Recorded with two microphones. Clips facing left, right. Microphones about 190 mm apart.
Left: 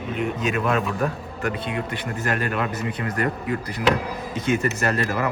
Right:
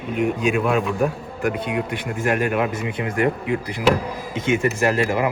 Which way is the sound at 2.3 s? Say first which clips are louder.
Right 5 dB; 10° right (ahead or behind).